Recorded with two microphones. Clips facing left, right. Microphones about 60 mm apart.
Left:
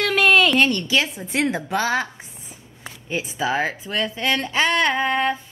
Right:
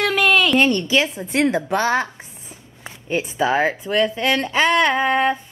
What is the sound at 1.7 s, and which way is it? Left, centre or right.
Speech, right.